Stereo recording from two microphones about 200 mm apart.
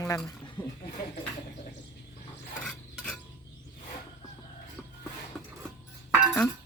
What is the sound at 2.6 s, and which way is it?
Filing, centre (ahead or behind).